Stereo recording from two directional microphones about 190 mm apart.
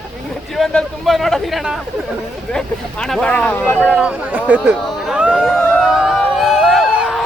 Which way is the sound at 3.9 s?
5° right (ahead or behind).